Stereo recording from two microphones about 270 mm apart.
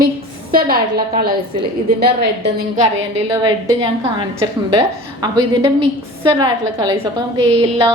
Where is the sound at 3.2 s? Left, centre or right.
Centre.